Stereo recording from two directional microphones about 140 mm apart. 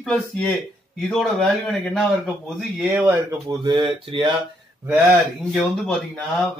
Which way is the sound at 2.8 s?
10° right (ahead or behind).